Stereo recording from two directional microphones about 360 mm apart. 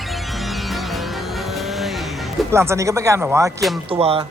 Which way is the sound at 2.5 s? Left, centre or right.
Centre.